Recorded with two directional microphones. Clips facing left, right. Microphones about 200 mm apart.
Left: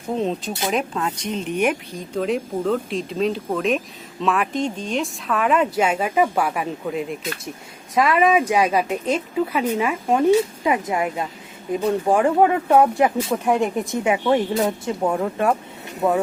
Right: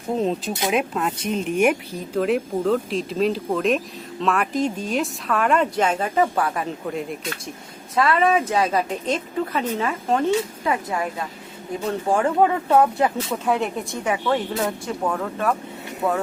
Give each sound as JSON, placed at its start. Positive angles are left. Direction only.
{"t": 0.2, "sound": "speech", "side_deg": 0}